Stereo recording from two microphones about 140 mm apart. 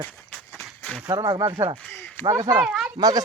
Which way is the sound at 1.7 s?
15° left (ahead or behind).